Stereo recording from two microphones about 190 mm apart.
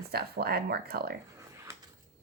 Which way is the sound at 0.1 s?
55° right (ahead or behind).